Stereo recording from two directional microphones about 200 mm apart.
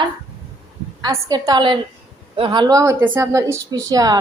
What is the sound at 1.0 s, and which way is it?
A woman's voice, 20° right (ahead or behind).